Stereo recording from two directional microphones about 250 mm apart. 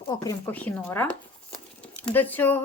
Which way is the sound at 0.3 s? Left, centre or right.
Centre.